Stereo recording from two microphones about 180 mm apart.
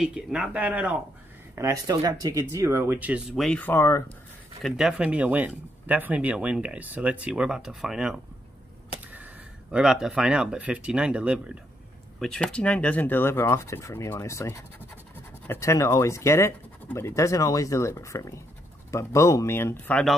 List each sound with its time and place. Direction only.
0.0 s speech: 5° right (ahead or behind); by 4.0 s 15° left (ahead or behind)
4.6 s speech: centre (ahead or behind)